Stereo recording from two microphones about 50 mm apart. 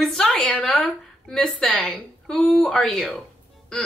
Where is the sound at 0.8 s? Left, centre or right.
Centre.